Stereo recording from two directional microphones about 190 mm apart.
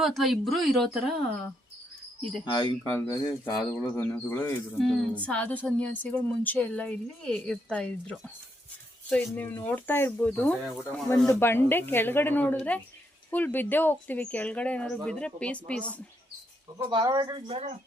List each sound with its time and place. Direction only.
0.0 s a woman's voice: centre (ahead or behind)
2.4 s a woman's voice: 25° left (ahead or behind); by 16.0 s 5° left (ahead or behind)
16.9 s speech: 20° right (ahead or behind)